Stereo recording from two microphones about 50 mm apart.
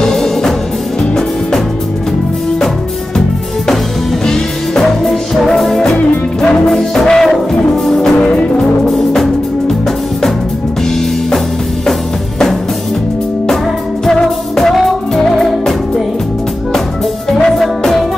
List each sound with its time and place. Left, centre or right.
0.0 s music: centre
5.0 s music: centre
8.2 s music: left
8.8 s music: centre
11.0 s music: centre
14.6 s music: centre
17.3 s music: centre
17.6 s music: centre